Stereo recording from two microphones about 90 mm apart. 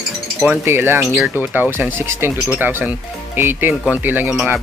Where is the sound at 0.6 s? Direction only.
25° right (ahead or behind).